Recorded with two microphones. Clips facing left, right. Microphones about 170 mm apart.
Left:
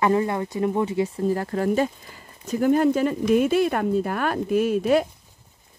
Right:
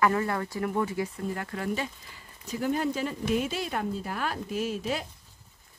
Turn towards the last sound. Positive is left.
turn(degrees=60)  # may be behind; listen again after turning